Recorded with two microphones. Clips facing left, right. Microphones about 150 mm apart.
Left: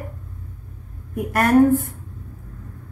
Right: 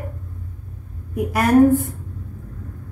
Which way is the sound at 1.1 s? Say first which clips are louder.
Right 1 dB; centre (ahead or behind).